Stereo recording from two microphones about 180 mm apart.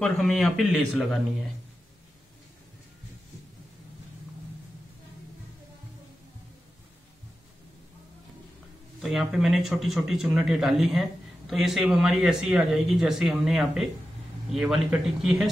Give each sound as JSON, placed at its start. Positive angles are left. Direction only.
{"t": 0.0, "sound": "speech", "side_deg": 0}
{"t": 9.0, "sound": "speech", "side_deg": 0}